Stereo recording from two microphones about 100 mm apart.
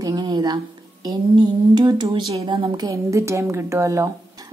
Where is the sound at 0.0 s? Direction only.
45° right (ahead or behind).